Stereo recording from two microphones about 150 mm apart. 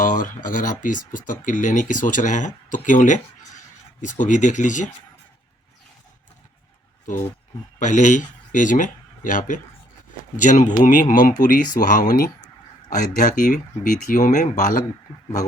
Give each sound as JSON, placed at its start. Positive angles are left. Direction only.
{"t": 0.0, "sound": "speech", "side_deg": 65}
{"t": 7.0, "sound": "speech", "side_deg": 60}
{"t": 13.0, "sound": "speech", "side_deg": 60}